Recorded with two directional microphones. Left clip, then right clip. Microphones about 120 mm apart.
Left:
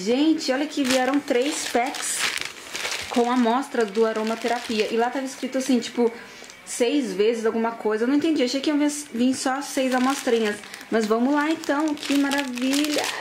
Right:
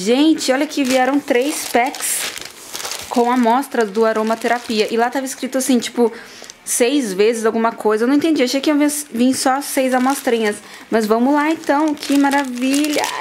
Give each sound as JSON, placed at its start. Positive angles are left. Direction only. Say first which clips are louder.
{"t": 0.0, "sound": "speech", "louder": "right 7 dB", "side_deg": -45}
{"t": 1.0, "sound": "speech", "louder": "right 6 dB", "side_deg": -30}
{"t": 3.2, "sound": "speech", "louder": "right 7 dB", "side_deg": -30}
{"t": 12.4, "sound": "speech", "louder": "right 6 dB", "side_deg": 0}